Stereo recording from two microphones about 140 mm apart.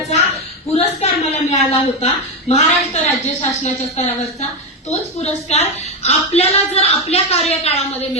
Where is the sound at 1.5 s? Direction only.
55° left (ahead or behind).